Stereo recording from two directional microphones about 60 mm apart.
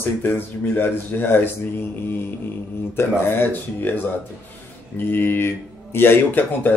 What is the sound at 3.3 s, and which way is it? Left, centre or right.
Speech, left.